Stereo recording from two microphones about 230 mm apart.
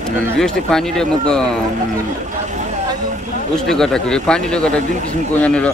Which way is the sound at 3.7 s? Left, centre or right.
Centre.